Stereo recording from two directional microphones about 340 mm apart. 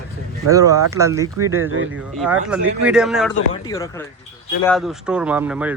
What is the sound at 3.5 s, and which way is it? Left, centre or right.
A man's voice, centre.